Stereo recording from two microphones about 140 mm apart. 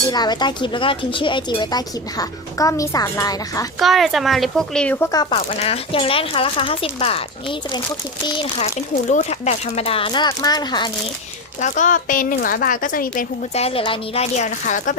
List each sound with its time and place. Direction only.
0.1 s speech: 30° left (ahead or behind)
3.8 s speech: centre (ahead or behind)
4.9 s speech: 25° left (ahead or behind)
5.3 s speech: 45° left (ahead or behind)
8.5 s speech: 60° left (ahead or behind); by 10.9 s 30° left (ahead or behind)
11.6 s a woman's voice: 60° left (ahead or behind)
13.5 s speech: 45° left (ahead or behind)